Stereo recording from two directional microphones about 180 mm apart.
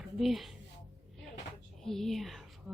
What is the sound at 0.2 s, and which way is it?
Speech, centre (ahead or behind).